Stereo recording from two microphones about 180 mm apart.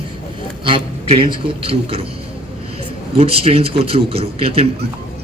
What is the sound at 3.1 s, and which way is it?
A man's voice, 35° right (ahead or behind).